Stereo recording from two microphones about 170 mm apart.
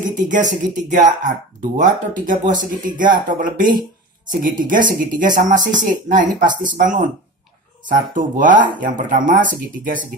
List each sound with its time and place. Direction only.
0.1 s speech: 50° right (ahead or behind)